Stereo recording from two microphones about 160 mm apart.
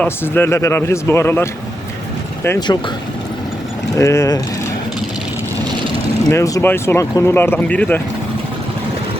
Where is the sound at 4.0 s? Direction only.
20° left (ahead or behind).